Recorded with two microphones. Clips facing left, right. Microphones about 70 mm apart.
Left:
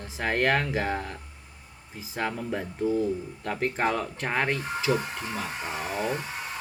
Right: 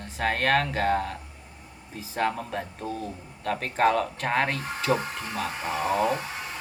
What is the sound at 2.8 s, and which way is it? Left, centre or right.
Speech, right.